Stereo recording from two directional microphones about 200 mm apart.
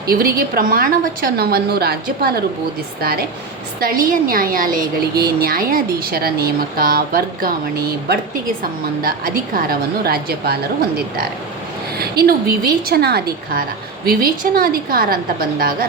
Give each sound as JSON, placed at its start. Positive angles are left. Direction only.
{"t": 0.1, "sound": "a woman's voice", "side_deg": -50}